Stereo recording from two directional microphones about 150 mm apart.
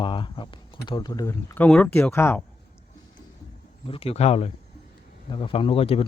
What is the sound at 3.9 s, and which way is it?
Speech, 40° left (ahead or behind).